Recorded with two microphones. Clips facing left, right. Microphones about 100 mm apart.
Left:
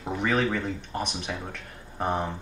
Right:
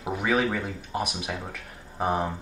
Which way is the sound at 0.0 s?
5° right (ahead or behind).